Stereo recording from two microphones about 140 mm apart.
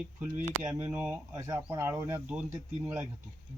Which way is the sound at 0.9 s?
15° right (ahead or behind).